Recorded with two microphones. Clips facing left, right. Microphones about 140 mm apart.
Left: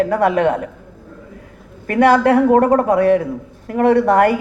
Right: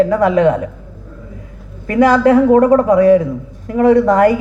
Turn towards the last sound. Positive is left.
turn(degrees=60)  # may be behind; listen again after turning